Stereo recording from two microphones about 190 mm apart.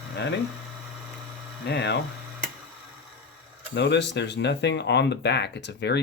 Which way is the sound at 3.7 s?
65° left (ahead or behind).